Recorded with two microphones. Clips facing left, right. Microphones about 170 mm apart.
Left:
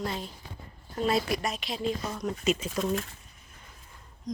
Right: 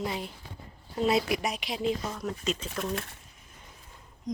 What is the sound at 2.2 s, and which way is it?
Speech, 5° left (ahead or behind).